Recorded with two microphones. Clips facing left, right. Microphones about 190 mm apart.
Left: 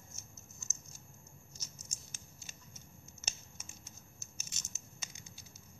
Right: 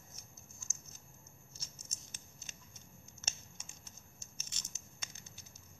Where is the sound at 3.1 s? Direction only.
10° left (ahead or behind).